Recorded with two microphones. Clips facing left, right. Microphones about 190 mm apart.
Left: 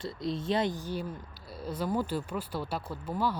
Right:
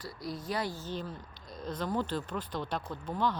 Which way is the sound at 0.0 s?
25° left (ahead or behind).